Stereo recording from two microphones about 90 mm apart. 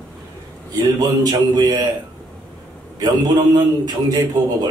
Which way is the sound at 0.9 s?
45° right (ahead or behind).